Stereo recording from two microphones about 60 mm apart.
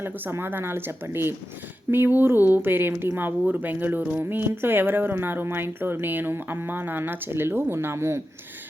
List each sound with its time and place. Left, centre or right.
0.0 s speech: right